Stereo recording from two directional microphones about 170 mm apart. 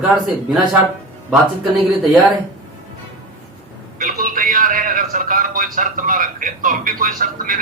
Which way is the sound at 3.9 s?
55° right (ahead or behind).